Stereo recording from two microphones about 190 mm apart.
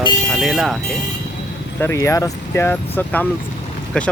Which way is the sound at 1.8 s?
15° left (ahead or behind).